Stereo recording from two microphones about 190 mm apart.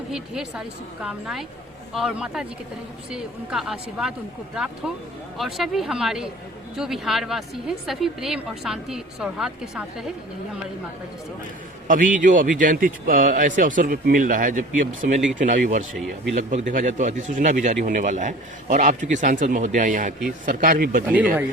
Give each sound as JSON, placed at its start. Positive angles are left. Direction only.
{"t": 0.1, "sound": "a woman's voice", "side_deg": -5}
{"t": 5.4, "sound": "a woman's voice", "side_deg": 0}
{"t": 11.9, "sound": "a man's voice", "side_deg": -45}
{"t": 16.0, "sound": "a woman's voice", "side_deg": 0}
{"t": 16.3, "sound": "a man's voice", "side_deg": -40}